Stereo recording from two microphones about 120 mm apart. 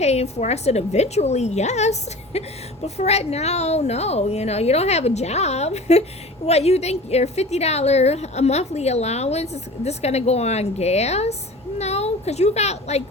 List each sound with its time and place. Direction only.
0.0 s a woman's voice: 65° left (ahead or behind)